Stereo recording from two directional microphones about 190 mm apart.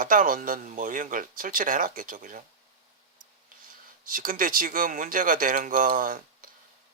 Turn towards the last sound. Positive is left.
turn(degrees=-45)  # may be behind; listen again after turning